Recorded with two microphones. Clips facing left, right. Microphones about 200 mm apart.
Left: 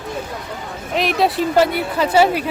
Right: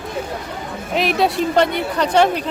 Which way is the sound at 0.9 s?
Centre (ahead or behind).